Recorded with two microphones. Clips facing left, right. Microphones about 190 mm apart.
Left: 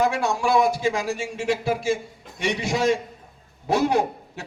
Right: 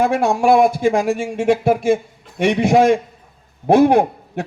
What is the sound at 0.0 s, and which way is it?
A man's voice, 55° right (ahead or behind).